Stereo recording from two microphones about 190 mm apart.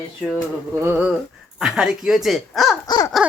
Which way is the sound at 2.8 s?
20° left (ahead or behind).